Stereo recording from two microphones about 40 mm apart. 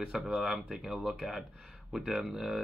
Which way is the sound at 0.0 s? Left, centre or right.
Right.